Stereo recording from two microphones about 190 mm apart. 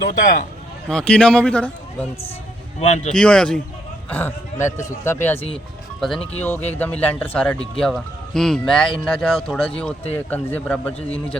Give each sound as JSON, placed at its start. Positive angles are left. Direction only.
{"t": 0.1, "sound": "a man's voice", "side_deg": 45}
{"t": 0.9, "sound": "speech", "side_deg": 5}
{"t": 2.8, "sound": "speech", "side_deg": 40}
{"t": 3.1, "sound": "speech", "side_deg": 5}